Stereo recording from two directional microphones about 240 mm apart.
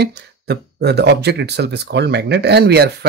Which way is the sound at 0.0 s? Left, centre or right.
Right.